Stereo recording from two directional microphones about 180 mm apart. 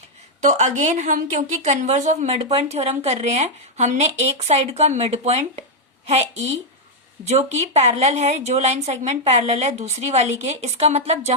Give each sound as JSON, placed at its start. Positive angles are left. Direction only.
{"t": 0.4, "sound": "a woman's voice", "side_deg": -40}